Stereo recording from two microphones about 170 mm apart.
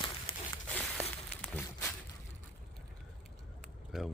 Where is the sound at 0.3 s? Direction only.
35° left (ahead or behind).